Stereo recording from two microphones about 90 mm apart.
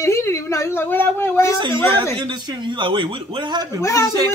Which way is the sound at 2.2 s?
60° right (ahead or behind).